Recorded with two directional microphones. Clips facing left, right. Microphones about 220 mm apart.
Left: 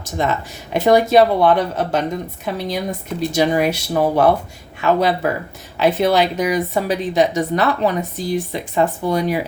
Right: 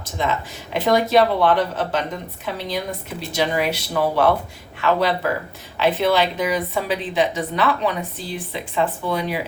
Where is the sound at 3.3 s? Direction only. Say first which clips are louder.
Left 4 dB; 45° left (ahead or behind).